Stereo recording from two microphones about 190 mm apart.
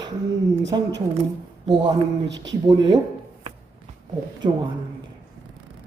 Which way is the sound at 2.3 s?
70° right (ahead or behind).